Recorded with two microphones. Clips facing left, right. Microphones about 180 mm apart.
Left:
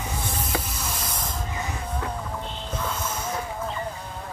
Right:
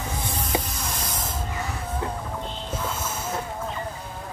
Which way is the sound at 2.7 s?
5° right (ahead or behind).